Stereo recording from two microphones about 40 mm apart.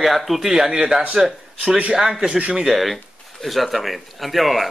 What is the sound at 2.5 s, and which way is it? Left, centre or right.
Speech, centre.